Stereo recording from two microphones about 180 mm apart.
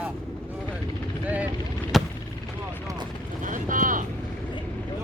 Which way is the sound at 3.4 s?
45° right (ahead or behind).